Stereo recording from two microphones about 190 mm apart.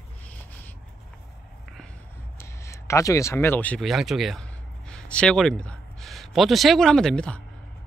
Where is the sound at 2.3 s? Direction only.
15° left (ahead or behind).